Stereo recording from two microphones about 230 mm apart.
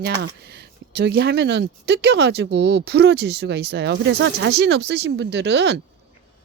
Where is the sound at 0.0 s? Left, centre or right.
Right.